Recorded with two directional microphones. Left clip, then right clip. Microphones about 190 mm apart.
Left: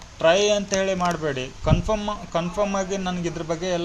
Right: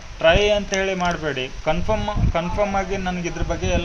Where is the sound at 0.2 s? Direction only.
35° left (ahead or behind).